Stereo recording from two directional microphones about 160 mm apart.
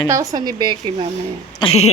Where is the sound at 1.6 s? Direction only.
40° left (ahead or behind).